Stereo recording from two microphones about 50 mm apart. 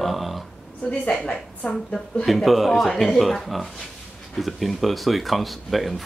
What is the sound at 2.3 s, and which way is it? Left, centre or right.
Speech, centre.